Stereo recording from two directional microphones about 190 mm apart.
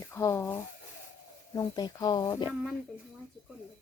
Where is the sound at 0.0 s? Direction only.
15° left (ahead or behind).